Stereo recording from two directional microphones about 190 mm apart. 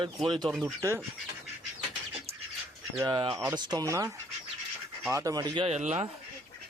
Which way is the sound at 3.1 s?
25° right (ahead or behind).